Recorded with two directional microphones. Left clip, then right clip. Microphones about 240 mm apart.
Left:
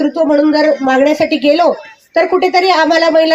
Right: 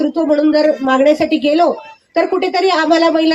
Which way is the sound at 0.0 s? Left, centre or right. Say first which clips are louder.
Left 2 dB; left.